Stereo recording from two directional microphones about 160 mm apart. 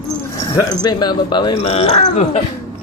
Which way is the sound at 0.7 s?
25° left (ahead or behind).